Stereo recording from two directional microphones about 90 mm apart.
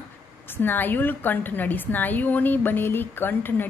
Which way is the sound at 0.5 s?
20° left (ahead or behind).